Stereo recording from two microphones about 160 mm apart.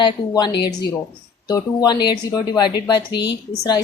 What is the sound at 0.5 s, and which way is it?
Speech, 90° left.